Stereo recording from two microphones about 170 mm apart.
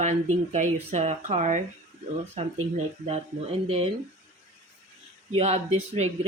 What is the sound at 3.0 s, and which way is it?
Speech, 35° right (ahead or behind).